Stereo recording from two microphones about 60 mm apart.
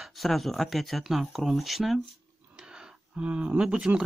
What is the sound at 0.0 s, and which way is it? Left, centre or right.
Speech, centre.